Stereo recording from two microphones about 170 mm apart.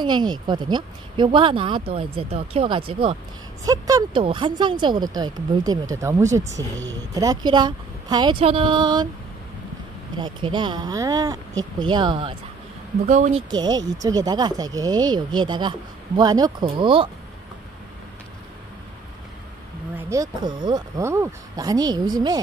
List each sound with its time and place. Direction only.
0.0 s speech: 25° right (ahead or behind)
10.1 s speech: 25° right (ahead or behind)
13.0 s speech: 40° right (ahead or behind)
13.5 s speech: 25° right (ahead or behind)
20.0 s speech: 20° right (ahead or behind)